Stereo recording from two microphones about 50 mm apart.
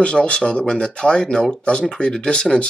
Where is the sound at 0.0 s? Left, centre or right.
Left.